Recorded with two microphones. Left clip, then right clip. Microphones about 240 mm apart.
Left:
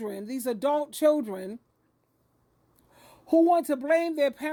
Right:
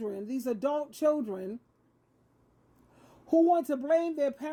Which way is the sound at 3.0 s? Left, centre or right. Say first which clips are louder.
Left 3 dB; left.